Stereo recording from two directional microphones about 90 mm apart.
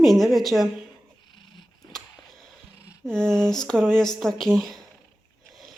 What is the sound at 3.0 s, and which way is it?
A woman's voice, 10° left (ahead or behind).